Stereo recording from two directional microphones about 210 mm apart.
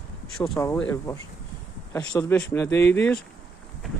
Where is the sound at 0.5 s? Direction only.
10° left (ahead or behind).